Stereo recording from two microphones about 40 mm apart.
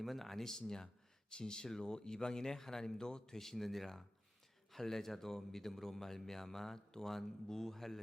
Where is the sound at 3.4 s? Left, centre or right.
Centre.